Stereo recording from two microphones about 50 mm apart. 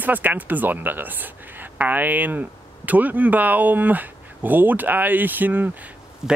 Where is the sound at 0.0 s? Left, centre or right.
Right.